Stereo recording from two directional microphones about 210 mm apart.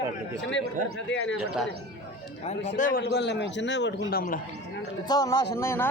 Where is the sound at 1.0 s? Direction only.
60° left (ahead or behind).